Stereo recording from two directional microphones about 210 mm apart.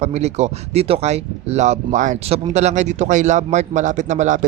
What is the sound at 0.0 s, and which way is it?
Speech, 30° right (ahead or behind).